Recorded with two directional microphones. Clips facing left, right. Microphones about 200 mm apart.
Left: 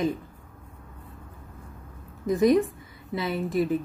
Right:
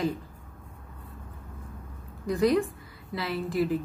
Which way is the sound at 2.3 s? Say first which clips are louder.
Left 3 dB; 20° left (ahead or behind).